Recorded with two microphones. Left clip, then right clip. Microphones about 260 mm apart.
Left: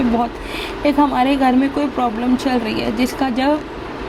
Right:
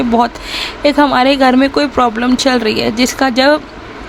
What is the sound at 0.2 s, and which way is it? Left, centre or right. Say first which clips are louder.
Speech: right 7 dB; right.